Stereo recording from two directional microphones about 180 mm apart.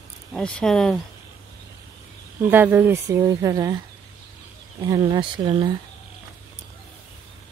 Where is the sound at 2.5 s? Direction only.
10° right (ahead or behind).